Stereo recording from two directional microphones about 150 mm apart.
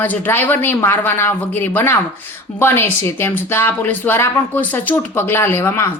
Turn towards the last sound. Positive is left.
turn(degrees=15)  # may be behind; listen again after turning